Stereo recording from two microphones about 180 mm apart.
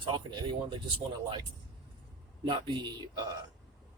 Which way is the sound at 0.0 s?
25° right (ahead or behind).